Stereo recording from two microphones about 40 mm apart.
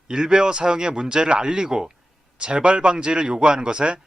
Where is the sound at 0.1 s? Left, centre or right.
Centre.